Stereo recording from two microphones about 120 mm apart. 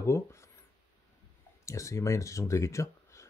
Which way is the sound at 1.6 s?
25° left (ahead or behind).